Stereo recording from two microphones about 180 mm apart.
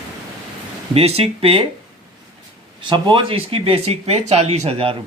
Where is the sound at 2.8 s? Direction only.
25° right (ahead or behind).